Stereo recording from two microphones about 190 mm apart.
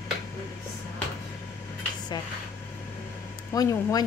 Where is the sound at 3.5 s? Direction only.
20° left (ahead or behind).